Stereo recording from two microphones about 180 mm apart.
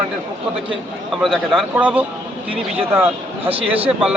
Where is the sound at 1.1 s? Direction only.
Centre (ahead or behind).